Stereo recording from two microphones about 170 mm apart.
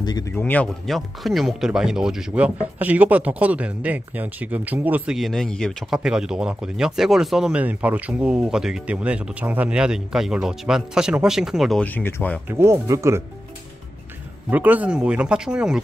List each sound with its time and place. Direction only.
0.0 s speech: 25° left (ahead or behind)
0.4 s speech: 10° left (ahead or behind)
11.8 s speech: 10° left (ahead or behind)
12.4 s speech: 15° right (ahead or behind)
14.5 s speech: 10° right (ahead or behind)